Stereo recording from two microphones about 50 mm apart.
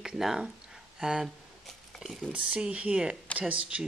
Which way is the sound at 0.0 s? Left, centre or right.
Centre.